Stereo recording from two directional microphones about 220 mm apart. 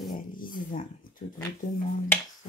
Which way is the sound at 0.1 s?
40° left (ahead or behind).